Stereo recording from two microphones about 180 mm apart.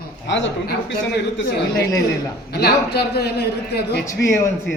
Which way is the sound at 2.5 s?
65° left (ahead or behind).